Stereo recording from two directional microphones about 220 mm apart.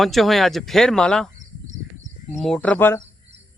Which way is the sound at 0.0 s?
Centre (ahead or behind).